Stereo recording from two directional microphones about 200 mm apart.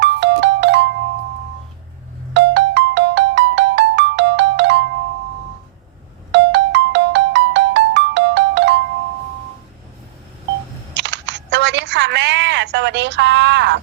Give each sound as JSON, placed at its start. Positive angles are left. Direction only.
{"t": 0.0, "sound": "music", "side_deg": -60}
{"t": 2.3, "sound": "ringtone", "side_deg": -60}
{"t": 6.3, "sound": "ringtone", "side_deg": -60}
{"t": 10.9, "sound": "camera", "side_deg": -60}